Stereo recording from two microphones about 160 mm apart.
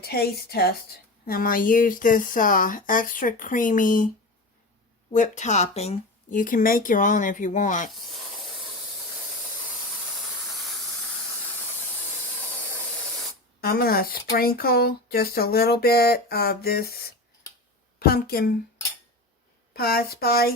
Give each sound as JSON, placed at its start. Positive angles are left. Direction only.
{"t": 0.0, "sound": "a woman's voice", "side_deg": 75}
{"t": 5.1, "sound": "speech", "side_deg": 50}
{"t": 6.3, "sound": "a woman's voice", "side_deg": 60}
{"t": 13.6, "sound": "speech", "side_deg": 70}
{"t": 19.7, "sound": "speech", "side_deg": 75}